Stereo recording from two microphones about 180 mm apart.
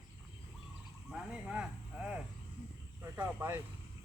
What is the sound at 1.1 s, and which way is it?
Speech, 5° right (ahead or behind).